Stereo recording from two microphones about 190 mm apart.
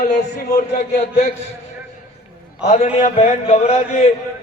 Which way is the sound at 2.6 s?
35° left (ahead or behind).